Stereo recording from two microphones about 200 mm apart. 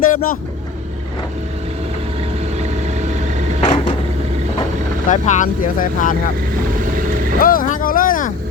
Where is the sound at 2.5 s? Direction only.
35° right (ahead or behind).